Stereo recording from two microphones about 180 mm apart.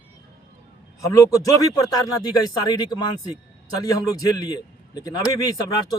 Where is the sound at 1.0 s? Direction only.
20° left (ahead or behind).